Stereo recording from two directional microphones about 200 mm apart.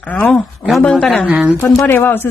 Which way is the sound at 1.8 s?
10° left (ahead or behind).